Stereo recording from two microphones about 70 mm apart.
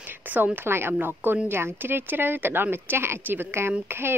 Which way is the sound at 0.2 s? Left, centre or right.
Right.